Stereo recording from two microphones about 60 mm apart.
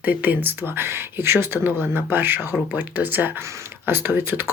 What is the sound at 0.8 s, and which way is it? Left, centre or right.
Speech, right.